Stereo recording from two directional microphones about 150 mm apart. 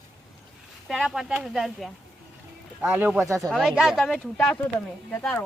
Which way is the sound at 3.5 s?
Centre (ahead or behind).